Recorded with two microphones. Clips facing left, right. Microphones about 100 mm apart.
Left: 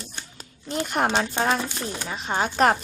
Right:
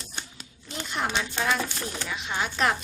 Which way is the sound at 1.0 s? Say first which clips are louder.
Left 2 dB; 45° left (ahead or behind).